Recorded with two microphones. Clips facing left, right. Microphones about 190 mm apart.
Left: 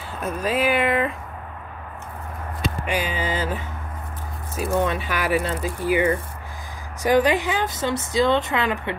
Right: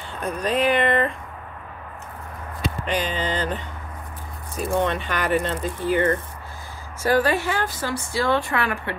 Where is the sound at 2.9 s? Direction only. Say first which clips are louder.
Right 1 dB; 10° left (ahead or behind).